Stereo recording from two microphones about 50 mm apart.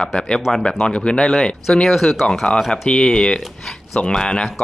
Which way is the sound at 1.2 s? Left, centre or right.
Centre.